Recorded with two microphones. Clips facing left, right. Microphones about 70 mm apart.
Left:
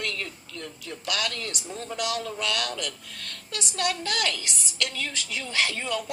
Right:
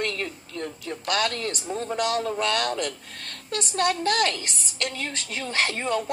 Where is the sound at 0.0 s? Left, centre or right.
Right.